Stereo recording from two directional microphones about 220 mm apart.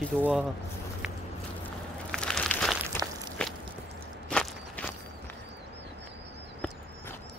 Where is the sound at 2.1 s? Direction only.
5° left (ahead or behind).